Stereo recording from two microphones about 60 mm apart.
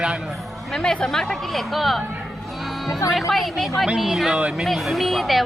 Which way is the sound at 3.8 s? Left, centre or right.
Centre.